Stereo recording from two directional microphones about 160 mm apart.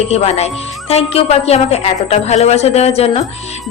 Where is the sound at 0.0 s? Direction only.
40° left (ahead or behind).